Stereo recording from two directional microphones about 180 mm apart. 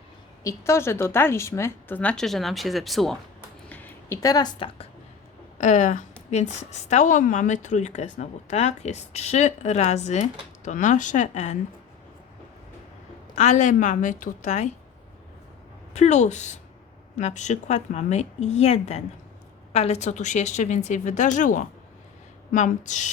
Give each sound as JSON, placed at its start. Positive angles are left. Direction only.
{"t": 0.4, "sound": "speech", "side_deg": 15}
{"t": 5.5, "sound": "a woman's voice", "side_deg": 45}
{"t": 13.3, "sound": "a woman's voice", "side_deg": 40}
{"t": 15.9, "sound": "a woman's voice", "side_deg": 40}